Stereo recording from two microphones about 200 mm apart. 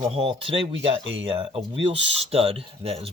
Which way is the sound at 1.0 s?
70° right (ahead or behind).